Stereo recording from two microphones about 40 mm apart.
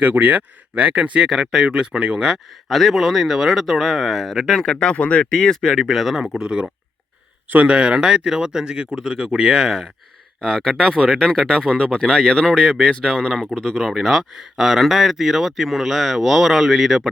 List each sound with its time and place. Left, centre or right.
0.0 s speech: right
1.2 s speech: centre
2.6 s speech: centre
4.6 s speech: centre
5.3 s speech: centre
5.7 s speech: centre
6.4 s speech: right
7.7 s speech: right
10.4 s speech: centre
13.9 s speech: centre